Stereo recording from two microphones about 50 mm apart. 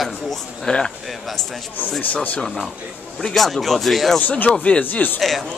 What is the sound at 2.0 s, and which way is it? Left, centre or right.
Speech, left.